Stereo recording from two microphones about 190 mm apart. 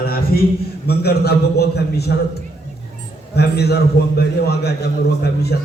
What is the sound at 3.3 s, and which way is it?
A man's voice, 60° left (ahead or behind).